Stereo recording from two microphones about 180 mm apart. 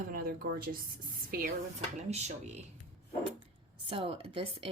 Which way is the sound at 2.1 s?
35° right (ahead or behind).